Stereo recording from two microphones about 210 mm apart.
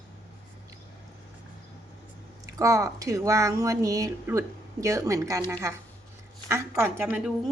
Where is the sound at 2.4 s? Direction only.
15° right (ahead or behind).